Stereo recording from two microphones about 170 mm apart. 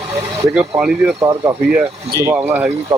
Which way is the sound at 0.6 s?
10° right (ahead or behind).